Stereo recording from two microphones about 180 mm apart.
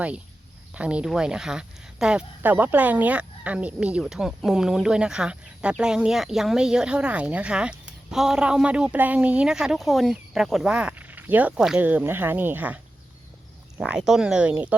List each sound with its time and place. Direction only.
0.7 s speech: 5° right (ahead or behind)